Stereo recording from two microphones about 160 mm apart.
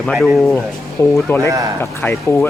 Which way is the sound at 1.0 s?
15° left (ahead or behind).